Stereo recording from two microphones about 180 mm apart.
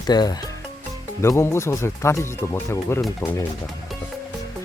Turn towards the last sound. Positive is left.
turn(degrees=20)  # may be behind; listen again after turning